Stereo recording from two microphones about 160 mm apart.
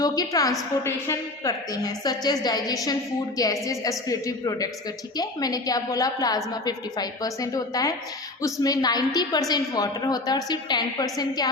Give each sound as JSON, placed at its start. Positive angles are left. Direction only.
{"t": 0.0, "sound": "a woman's voice", "side_deg": 25}